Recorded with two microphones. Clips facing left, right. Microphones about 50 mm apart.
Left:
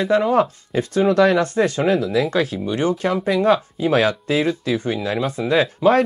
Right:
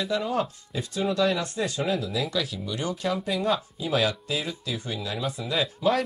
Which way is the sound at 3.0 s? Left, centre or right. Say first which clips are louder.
Left 6 dB; left.